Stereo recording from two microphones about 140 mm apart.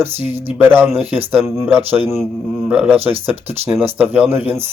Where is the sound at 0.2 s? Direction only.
15° right (ahead or behind).